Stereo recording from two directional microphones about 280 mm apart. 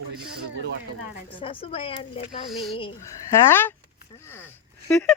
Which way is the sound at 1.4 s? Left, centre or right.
Centre.